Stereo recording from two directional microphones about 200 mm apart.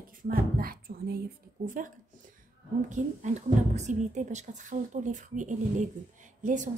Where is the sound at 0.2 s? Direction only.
45° right (ahead or behind).